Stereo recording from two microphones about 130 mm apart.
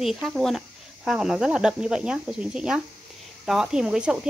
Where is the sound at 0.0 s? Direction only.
Centre (ahead or behind).